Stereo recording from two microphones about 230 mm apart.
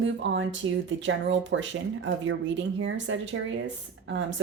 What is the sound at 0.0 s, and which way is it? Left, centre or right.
A woman's voice, right.